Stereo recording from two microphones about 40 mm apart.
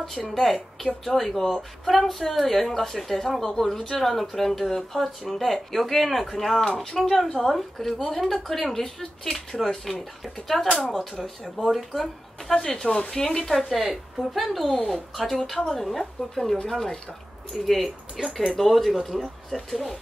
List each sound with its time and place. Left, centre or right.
0.2 s speech: centre
6.6 s speech: centre
7.0 s speech: centre
12.5 s speech: centre
13.5 s speech: centre